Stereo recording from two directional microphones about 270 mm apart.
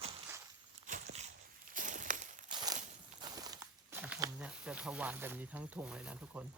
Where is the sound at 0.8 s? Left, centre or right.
Right.